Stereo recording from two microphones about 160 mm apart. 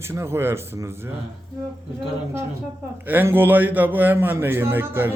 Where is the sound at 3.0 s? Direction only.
10° right (ahead or behind).